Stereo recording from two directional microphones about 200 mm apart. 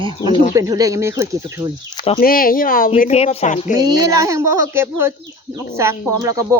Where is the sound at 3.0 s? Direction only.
35° left (ahead or behind).